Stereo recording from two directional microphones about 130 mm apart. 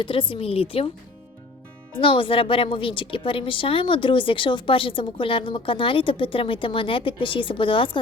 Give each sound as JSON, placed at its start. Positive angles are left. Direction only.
{"t": 0.0, "sound": "a woman's voice", "side_deg": 40}
{"t": 2.0, "sound": "a woman's voice", "side_deg": 40}